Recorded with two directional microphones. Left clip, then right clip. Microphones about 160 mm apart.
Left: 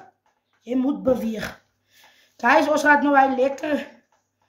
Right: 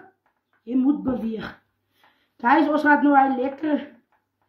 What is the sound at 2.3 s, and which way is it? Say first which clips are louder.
Speech: left 1 dB; 60° left (ahead or behind).